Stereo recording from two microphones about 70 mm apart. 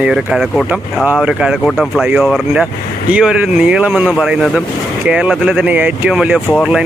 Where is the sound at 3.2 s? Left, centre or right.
Centre.